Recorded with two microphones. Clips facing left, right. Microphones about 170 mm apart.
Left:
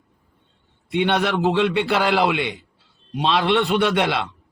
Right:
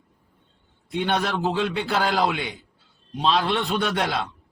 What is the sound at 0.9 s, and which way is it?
A man's voice, 70° left (ahead or behind).